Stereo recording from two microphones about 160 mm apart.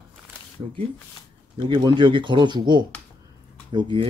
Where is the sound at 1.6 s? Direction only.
30° right (ahead or behind).